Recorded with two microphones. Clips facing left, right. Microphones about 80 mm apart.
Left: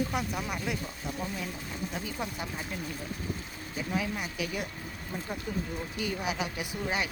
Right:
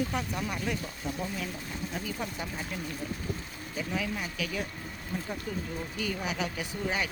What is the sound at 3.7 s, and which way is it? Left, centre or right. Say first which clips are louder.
Speech: left 1 dB; centre.